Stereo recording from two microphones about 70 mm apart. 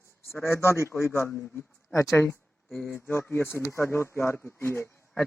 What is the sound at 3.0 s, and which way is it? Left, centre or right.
Speech, left.